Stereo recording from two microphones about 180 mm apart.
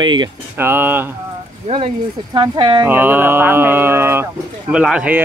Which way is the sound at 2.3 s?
25° right (ahead or behind).